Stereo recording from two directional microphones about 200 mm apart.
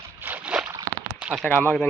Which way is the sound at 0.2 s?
10° right (ahead or behind).